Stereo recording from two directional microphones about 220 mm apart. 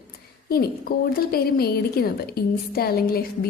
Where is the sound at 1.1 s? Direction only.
45° left (ahead or behind).